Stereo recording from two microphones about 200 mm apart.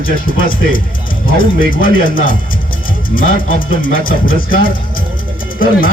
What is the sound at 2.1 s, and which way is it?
Speech, 45° left (ahead or behind).